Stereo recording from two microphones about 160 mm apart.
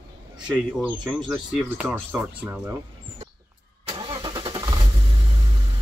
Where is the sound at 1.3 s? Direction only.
10° right (ahead or behind).